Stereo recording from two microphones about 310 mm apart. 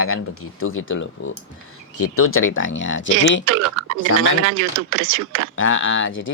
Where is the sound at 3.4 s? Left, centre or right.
Right.